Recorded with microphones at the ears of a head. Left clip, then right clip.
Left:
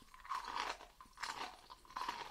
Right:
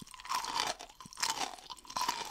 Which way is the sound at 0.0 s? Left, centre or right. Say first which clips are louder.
Right 8 dB; right.